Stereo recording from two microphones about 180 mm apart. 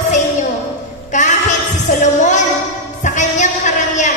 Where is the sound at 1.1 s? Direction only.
40° left (ahead or behind).